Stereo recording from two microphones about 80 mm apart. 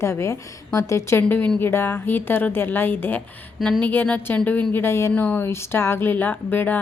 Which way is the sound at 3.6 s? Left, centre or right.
Centre.